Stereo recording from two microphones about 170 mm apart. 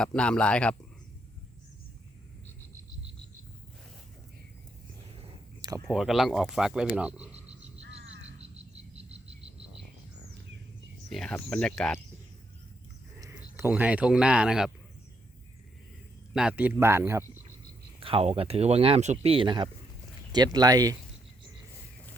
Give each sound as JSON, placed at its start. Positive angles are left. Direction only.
{"t": 0.0, "sound": "speech", "side_deg": 5}
{"t": 5.9, "sound": "speech", "side_deg": 0}
{"t": 8.0, "sound": "frog", "side_deg": -90}
{"t": 8.4, "sound": "frog", "side_deg": -40}
{"t": 11.1, "sound": "speech", "side_deg": 5}
{"t": 13.1, "sound": "a sound", "side_deg": -20}
{"t": 13.6, "sound": "speech", "side_deg": -10}
{"t": 16.3, "sound": "speech", "side_deg": -5}
{"t": 18.0, "sound": "speech", "side_deg": -35}